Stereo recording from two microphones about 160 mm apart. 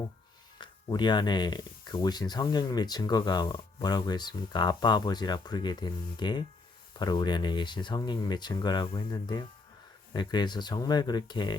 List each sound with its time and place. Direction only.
0.6 s speech: 30° left (ahead or behind)